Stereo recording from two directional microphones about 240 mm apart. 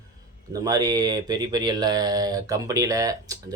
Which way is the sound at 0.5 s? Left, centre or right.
Centre.